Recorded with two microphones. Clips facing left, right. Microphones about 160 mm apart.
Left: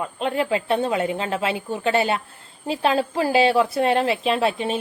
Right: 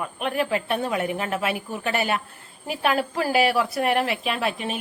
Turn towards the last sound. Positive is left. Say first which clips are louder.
# left 5 dB
turn(degrees=30)  # may be behind; listen again after turning